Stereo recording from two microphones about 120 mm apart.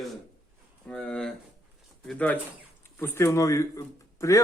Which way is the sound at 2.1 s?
10° left (ahead or behind).